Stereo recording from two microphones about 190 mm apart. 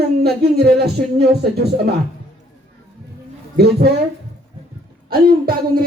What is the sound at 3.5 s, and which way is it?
Speech, 60° right (ahead or behind).